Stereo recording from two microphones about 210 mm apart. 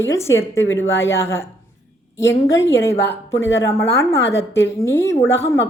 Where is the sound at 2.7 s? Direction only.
15° left (ahead or behind).